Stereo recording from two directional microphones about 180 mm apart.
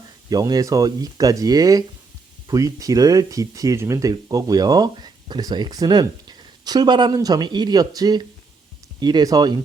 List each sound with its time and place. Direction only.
0.3 s speech: 20° right (ahead or behind)